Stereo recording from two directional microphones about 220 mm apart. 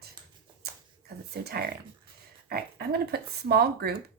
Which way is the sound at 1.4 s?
45° right (ahead or behind).